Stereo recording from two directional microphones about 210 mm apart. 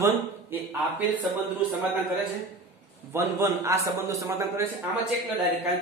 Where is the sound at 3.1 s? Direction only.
10° right (ahead or behind).